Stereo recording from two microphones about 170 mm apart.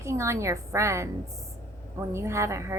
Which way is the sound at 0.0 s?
15° right (ahead or behind).